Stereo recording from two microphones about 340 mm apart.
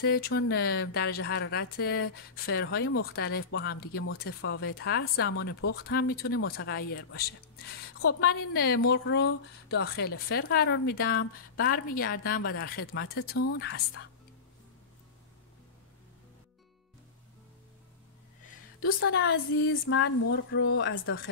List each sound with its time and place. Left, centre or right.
0.0 s a woman's voice: left
18.9 s speech: left